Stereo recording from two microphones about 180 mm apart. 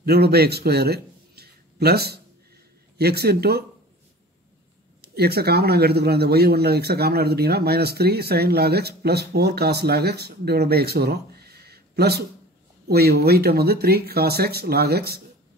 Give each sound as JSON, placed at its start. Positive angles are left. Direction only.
{"t": 0.0, "sound": "a man's voice", "side_deg": -60}
{"t": 5.0, "sound": "speech", "side_deg": -60}